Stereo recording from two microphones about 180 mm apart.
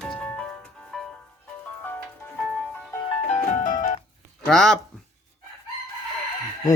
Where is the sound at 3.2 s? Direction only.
45° left (ahead or behind).